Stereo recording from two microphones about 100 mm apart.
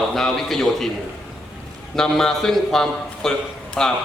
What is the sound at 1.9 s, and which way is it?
A man's voice, 5° left (ahead or behind).